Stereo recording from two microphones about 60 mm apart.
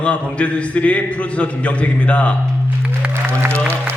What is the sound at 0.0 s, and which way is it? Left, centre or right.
A man's voice, left.